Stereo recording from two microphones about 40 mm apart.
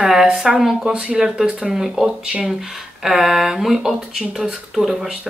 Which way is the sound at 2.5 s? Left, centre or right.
Centre.